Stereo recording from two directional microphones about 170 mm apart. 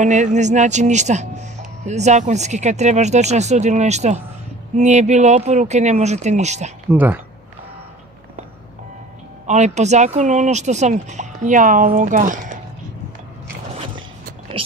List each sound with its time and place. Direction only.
0.0 s speech: 45° right (ahead or behind)
6.9 s speech: 10° right (ahead or behind)
9.5 s speech: 40° right (ahead or behind)